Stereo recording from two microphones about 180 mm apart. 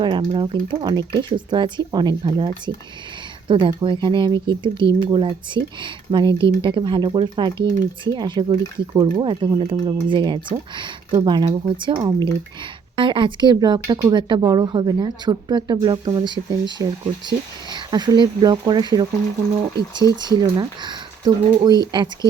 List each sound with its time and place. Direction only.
0.0 s speech: 25° right (ahead or behind)
20.2 s speech: 20° right (ahead or behind)